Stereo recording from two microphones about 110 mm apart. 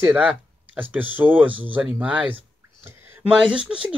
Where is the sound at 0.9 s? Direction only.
15° right (ahead or behind).